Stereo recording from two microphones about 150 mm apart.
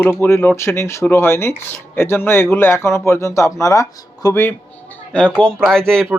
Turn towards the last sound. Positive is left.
turn(degrees=5)  # may be behind; listen again after turning